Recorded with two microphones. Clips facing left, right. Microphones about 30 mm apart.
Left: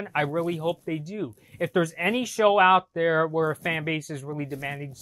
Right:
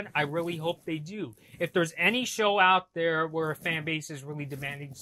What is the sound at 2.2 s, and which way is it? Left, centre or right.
Speech, centre.